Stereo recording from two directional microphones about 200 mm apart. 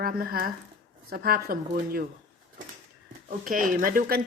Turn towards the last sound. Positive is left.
turn(degrees=-45)  # may be behind; listen again after turning